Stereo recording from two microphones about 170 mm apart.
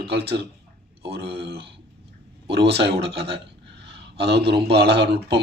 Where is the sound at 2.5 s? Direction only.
75° right (ahead or behind).